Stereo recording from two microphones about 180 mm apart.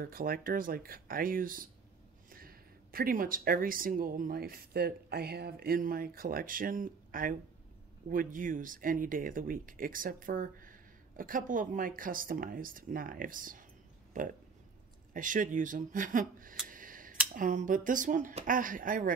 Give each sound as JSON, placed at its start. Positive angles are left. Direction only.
{"t": 0.0, "sound": "speech", "side_deg": -55}
{"t": 15.1, "sound": "speech", "side_deg": -45}
{"t": 16.6, "sound": "a sound", "side_deg": -50}
{"t": 17.4, "sound": "speech", "side_deg": -45}